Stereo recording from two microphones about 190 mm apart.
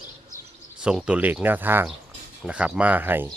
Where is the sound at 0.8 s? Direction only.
5° right (ahead or behind).